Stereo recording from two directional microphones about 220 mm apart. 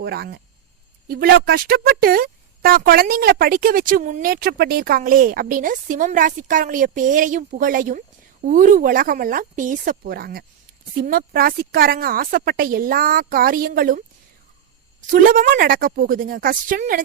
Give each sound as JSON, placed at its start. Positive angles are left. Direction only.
{"t": 0.0, "sound": "speech", "side_deg": -45}
{"t": 15.1, "sound": "speech", "side_deg": -40}